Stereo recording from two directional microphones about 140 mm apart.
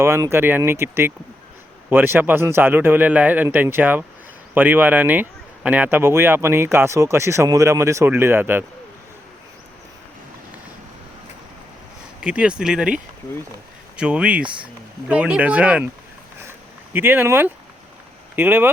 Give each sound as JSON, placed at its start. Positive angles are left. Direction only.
{"t": 0.0, "sound": "speech", "side_deg": -20}
{"t": 12.2, "sound": "speech", "side_deg": -10}
{"t": 16.5, "sound": "a sound", "side_deg": -15}
{"t": 18.3, "sound": "speech", "side_deg": -15}